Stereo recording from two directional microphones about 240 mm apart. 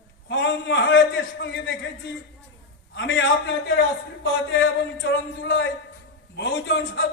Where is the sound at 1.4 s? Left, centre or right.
Left.